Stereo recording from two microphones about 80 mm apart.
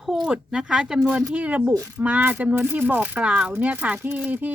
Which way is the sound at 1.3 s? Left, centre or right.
Centre.